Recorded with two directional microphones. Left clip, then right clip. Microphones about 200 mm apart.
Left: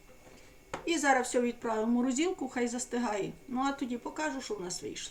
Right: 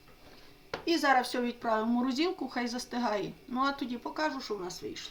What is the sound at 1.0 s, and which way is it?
Speech, 15° right (ahead or behind).